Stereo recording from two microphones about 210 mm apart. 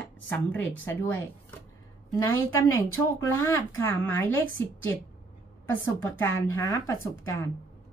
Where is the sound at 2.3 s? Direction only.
75° left (ahead or behind).